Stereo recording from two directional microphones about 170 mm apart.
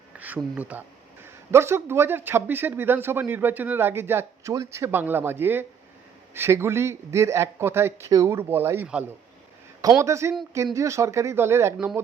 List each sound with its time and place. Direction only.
0.2 s speech: 10° right (ahead or behind)